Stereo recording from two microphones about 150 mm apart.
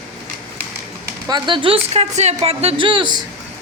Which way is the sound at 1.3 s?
30° right (ahead or behind).